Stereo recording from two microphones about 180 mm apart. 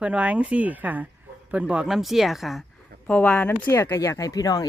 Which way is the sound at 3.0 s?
10° left (ahead or behind).